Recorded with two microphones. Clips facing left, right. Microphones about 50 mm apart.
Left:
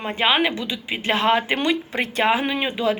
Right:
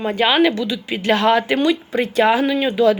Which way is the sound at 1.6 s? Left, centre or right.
Left.